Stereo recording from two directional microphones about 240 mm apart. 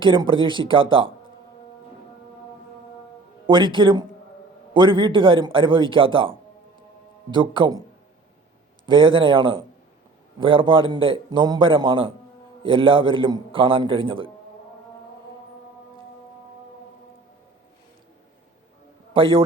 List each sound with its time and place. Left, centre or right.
0.0 s a man's voice: right
3.4 s a man's voice: right
8.9 s a man's voice: right
19.1 s a man's voice: right